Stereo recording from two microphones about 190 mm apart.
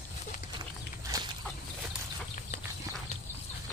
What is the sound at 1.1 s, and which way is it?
Chicken, 15° right (ahead or behind).